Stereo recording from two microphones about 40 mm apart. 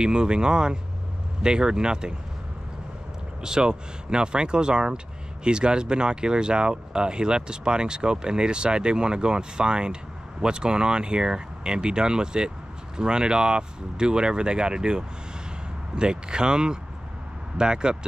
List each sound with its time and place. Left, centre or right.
0.0 s speech: right
3.4 s speech: centre